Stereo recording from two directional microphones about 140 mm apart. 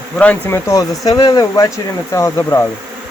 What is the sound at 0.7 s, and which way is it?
Speech, 30° left (ahead or behind).